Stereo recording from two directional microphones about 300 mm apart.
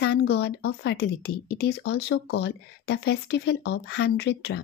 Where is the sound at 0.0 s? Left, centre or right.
Left.